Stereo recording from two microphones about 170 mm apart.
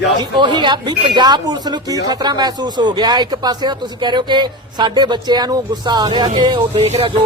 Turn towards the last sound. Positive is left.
turn(degrees=-35)  # may be behind; listen again after turning